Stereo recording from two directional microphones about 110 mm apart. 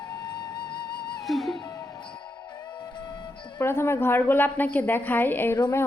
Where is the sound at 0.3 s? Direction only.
40° left (ahead or behind).